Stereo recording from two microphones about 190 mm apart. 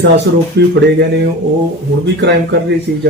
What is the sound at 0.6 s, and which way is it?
Speech, 60° right (ahead or behind).